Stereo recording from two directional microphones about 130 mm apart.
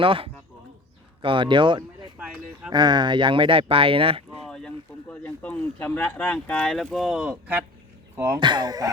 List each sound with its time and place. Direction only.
0.0 s speech: 45° right (ahead or behind)
2.1 s a sound: 5° right (ahead or behind)
2.7 s speech: 35° right (ahead or behind)
4.4 s speech: 5° left (ahead or behind); by 8.4 s 20° right (ahead or behind)
8.4 s speech: 35° right (ahead or behind)